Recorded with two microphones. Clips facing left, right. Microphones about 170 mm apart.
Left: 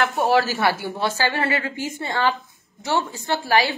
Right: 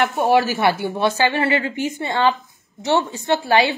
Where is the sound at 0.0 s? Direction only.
20° right (ahead or behind).